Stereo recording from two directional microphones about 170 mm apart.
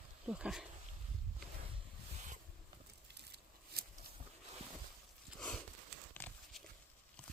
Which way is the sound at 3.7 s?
65° right (ahead or behind).